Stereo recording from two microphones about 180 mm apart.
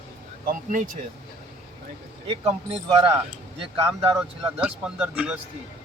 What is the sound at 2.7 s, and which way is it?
Speech, 30° right (ahead or behind).